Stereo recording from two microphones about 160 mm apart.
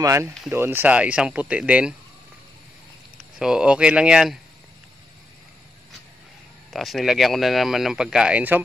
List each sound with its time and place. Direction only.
0.0 s speech: 20° right (ahead or behind)
3.3 s speech: 5° right (ahead or behind)
6.7 s speech: centre (ahead or behind)